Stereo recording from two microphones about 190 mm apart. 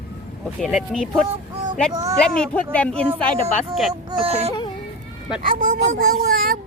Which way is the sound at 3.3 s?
30° right (ahead or behind).